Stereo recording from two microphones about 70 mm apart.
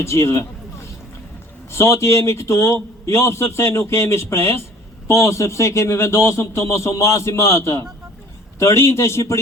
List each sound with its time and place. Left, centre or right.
0.0 s a man's voice: left
1.7 s a man's voice: left